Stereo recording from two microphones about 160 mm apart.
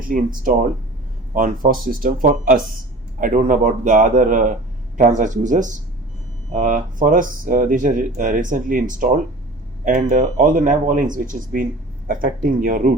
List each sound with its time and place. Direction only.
0.0 s speech: 60° right (ahead or behind)